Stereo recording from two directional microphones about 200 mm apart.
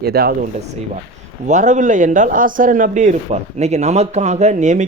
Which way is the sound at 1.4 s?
40° right (ahead or behind).